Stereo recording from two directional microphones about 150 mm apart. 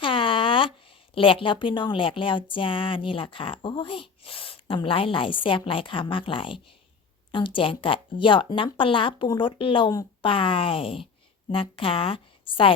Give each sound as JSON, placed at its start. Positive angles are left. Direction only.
{"t": 0.0, "sound": "speech", "side_deg": 35}